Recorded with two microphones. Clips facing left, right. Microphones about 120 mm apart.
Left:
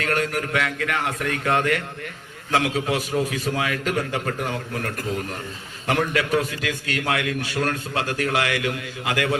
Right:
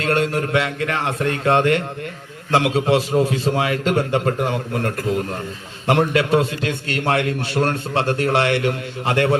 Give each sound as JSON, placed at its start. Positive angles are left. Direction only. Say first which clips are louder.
{"t": 0.0, "sound": "a man's voice", "louder": "right 5 dB", "side_deg": -30}